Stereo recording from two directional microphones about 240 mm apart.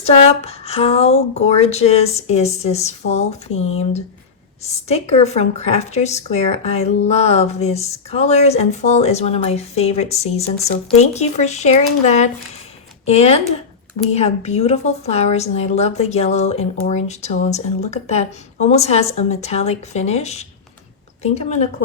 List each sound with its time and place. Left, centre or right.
0.0 s a woman's voice: left